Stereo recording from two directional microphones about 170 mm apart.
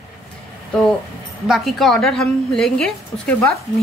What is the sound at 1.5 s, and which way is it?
A woman's voice, centre (ahead or behind).